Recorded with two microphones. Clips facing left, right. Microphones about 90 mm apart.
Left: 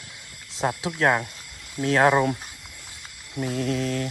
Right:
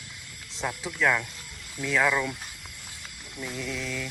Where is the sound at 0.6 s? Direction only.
50° left (ahead or behind).